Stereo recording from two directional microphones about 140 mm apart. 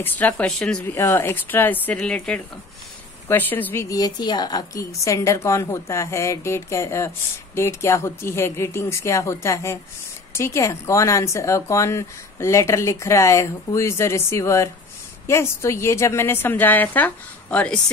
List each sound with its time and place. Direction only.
0.0 s a woman's voice: 15° left (ahead or behind)
0.8 s a woman's voice: 20° left (ahead or behind)
3.9 s a woman's voice: 30° left (ahead or behind); by 17.7 s 10° left (ahead or behind)